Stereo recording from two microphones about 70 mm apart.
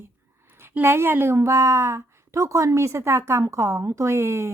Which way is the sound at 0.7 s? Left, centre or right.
Right.